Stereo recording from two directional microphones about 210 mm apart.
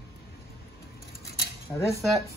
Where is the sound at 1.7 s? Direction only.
10° left (ahead or behind).